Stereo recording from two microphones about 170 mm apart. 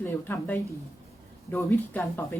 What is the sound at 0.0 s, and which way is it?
Speech, 10° left (ahead or behind).